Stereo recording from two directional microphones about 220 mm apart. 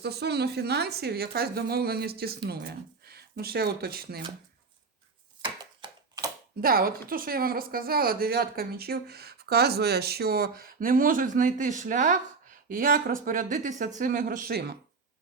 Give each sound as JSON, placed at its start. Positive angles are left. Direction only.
{"t": 0.0, "sound": "speech", "side_deg": -45}
{"t": 5.4, "sound": "a sound", "side_deg": -20}
{"t": 6.6, "sound": "speech", "side_deg": -40}